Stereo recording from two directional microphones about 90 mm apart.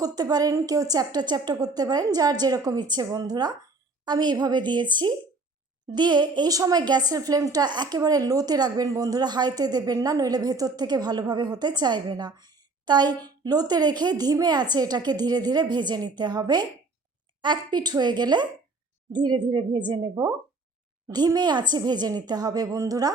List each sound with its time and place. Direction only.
0.0 s a woman's voice: 45° right (ahead or behind)